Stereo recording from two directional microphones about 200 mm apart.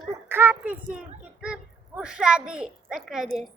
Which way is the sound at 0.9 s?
5° right (ahead or behind).